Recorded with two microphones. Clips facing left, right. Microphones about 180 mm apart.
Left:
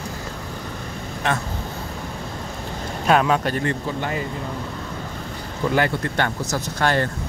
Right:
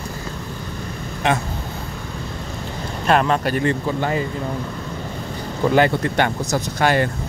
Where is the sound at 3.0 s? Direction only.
Centre (ahead or behind).